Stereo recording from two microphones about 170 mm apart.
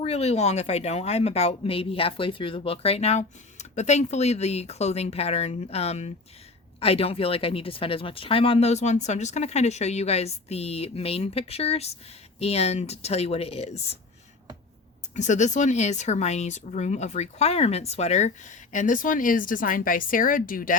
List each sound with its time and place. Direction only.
0.0 s speech: 40° left (ahead or behind)
15.1 s speech: 45° left (ahead or behind)